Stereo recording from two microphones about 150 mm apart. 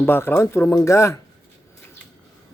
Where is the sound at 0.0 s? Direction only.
15° left (ahead or behind).